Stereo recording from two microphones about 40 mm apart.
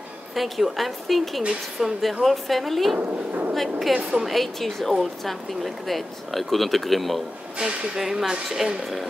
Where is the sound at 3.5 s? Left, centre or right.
Centre.